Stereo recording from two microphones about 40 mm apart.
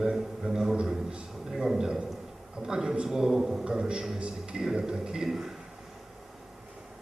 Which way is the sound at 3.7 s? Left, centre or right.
Right.